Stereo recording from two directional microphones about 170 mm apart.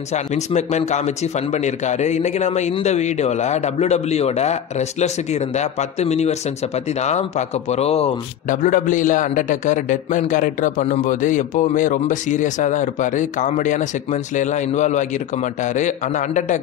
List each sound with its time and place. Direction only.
0.1 s a man's voice: 40° left (ahead or behind)
8.6 s a man's voice: 50° left (ahead or behind)